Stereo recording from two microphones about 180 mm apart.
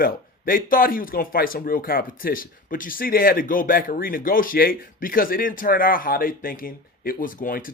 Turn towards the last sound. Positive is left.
turn(degrees=50)  # may be behind; listen again after turning